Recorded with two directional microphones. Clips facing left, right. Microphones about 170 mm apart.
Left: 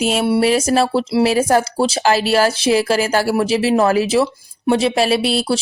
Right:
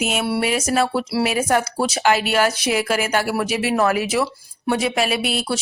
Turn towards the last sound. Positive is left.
turn(degrees=30)  # may be behind; listen again after turning